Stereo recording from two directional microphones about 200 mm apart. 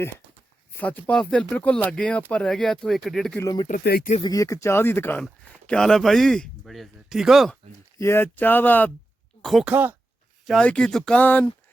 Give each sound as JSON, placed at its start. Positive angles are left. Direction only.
{"t": 0.8, "sound": "speech", "side_deg": 5}
{"t": 3.4, "sound": "speech", "side_deg": 20}
{"t": 3.7, "sound": "speech", "side_deg": 50}
{"t": 4.2, "sound": "speech", "side_deg": 15}
{"t": 7.9, "sound": "speech", "side_deg": 15}